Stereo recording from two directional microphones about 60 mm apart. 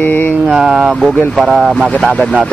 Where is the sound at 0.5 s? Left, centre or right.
Centre.